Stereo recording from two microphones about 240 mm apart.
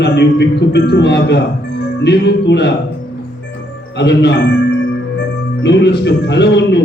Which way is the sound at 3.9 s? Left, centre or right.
Left.